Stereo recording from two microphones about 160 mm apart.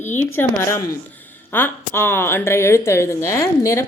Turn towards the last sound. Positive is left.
turn(degrees=20)  # may be behind; listen again after turning